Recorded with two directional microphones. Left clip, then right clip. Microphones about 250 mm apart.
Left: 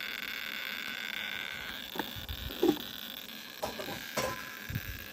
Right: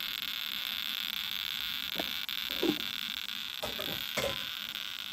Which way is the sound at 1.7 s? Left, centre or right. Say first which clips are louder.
Right 4 dB; right.